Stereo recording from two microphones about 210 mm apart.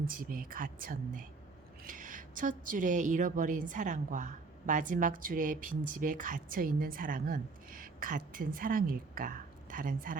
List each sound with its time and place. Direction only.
0.0 s a woman's voice: 45° right (ahead or behind)